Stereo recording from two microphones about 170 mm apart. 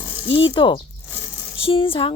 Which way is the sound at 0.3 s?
30° left (ahead or behind).